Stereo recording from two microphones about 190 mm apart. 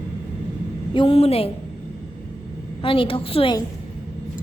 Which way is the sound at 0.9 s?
30° left (ahead or behind).